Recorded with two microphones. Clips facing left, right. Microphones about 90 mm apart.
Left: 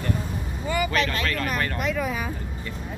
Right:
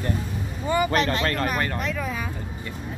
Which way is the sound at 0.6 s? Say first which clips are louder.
Right 3 dB; 30° right (ahead or behind).